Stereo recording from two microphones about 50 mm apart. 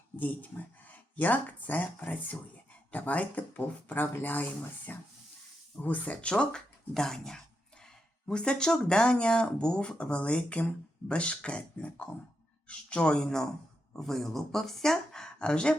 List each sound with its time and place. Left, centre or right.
0.2 s speech: left
5.8 s speech: left
6.3 s speech: centre